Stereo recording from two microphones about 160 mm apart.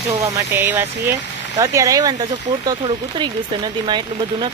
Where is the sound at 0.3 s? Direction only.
15° right (ahead or behind).